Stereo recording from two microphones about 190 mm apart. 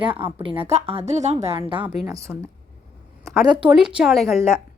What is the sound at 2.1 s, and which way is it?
Speech, 15° right (ahead or behind).